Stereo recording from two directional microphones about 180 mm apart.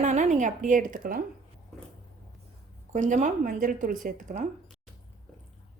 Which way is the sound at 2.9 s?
40° right (ahead or behind).